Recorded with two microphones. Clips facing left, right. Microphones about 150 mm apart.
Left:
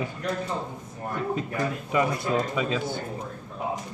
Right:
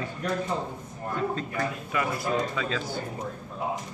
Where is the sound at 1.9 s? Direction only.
20° left (ahead or behind).